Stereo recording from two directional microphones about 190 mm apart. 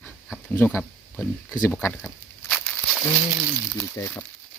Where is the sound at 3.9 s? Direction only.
15° left (ahead or behind).